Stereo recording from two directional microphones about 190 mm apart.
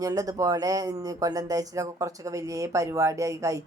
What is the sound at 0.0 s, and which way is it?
Speech, 20° right (ahead or behind).